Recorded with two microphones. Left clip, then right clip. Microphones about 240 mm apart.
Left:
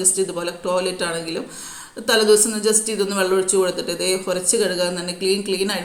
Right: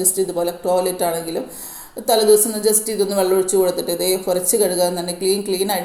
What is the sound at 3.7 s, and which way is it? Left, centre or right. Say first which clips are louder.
Speech: right 2 dB; left.